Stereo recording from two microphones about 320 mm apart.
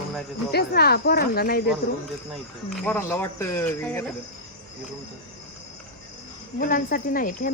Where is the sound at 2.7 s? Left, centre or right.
Centre.